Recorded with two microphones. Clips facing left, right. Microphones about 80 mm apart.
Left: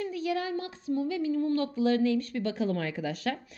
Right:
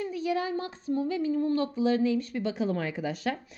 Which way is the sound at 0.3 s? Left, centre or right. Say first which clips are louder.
Right 3 dB; right.